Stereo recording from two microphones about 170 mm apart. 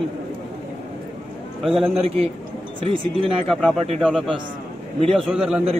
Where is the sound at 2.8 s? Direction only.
30° right (ahead or behind).